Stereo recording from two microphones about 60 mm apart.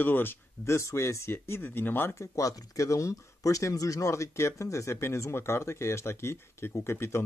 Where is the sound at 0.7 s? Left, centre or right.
Left.